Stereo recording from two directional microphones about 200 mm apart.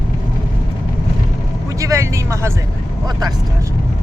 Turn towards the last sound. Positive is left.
turn(degrees=-15)  # may be behind; listen again after turning